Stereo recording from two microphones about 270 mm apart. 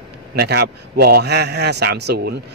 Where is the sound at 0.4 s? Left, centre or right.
Right.